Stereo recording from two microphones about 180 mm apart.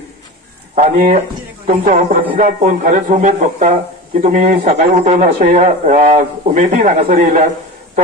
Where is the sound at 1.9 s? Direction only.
45° right (ahead or behind).